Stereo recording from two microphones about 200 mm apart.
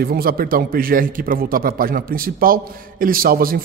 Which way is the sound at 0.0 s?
50° right (ahead or behind).